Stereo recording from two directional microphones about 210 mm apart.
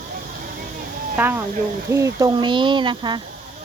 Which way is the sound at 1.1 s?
10° right (ahead or behind).